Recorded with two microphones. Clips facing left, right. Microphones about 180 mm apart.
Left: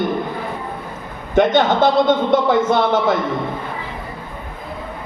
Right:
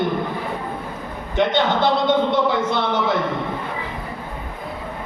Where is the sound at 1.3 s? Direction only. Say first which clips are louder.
Left 5 dB; 45° left (ahead or behind).